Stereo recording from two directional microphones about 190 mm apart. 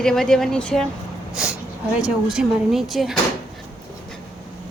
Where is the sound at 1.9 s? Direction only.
5° right (ahead or behind).